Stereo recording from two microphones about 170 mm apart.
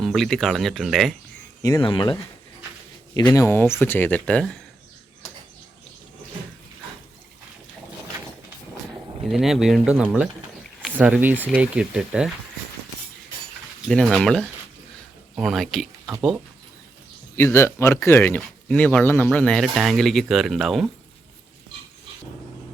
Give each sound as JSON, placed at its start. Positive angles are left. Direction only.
{"t": 0.0, "sound": "speech", "side_deg": 0}
{"t": 1.8, "sound": "speech", "side_deg": 30}
{"t": 3.2, "sound": "speech", "side_deg": 15}
{"t": 9.3, "sound": "speech", "side_deg": 0}
{"t": 13.8, "sound": "speech", "side_deg": 5}
{"t": 17.3, "sound": "speech", "side_deg": 15}